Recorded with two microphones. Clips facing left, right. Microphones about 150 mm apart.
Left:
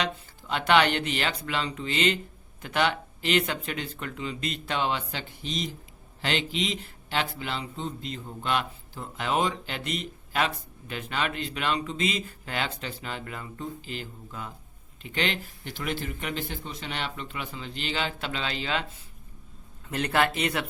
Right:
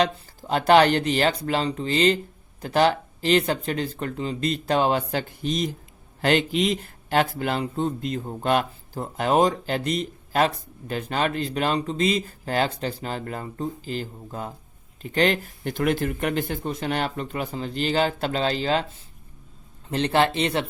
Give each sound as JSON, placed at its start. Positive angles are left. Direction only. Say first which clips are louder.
{"t": 0.0, "sound": "speech", "louder": "right 8 dB", "side_deg": -40}
{"t": 19.9, "sound": "speech", "louder": "right 4 dB", "side_deg": -30}